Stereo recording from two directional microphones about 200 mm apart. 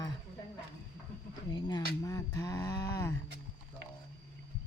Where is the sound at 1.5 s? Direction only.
20° left (ahead or behind).